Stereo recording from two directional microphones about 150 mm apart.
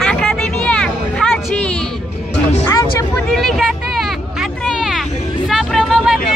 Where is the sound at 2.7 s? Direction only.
20° left (ahead or behind).